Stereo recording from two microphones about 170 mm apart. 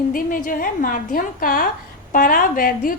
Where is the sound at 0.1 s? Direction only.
55° left (ahead or behind).